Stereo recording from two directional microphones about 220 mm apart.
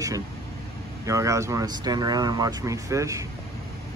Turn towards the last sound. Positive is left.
turn(degrees=-15)  # may be behind; listen again after turning